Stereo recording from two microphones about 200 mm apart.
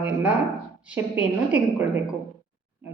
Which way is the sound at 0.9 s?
5° right (ahead or behind).